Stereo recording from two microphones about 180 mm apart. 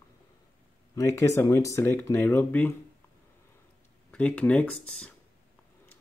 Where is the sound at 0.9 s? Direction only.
15° left (ahead or behind).